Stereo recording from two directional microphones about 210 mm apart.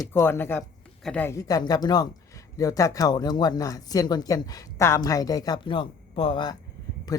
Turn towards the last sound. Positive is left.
turn(degrees=25)  # may be behind; listen again after turning